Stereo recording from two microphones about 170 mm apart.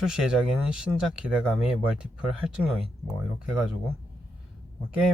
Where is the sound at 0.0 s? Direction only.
5° right (ahead or behind).